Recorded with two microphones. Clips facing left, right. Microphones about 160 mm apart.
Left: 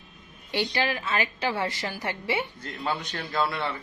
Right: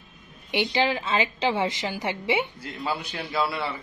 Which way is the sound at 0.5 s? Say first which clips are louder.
Right 3 dB; 20° right (ahead or behind).